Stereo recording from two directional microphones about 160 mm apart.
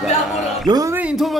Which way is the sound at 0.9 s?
5° right (ahead or behind).